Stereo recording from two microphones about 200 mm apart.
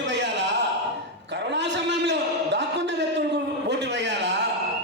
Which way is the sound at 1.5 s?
60° right (ahead or behind).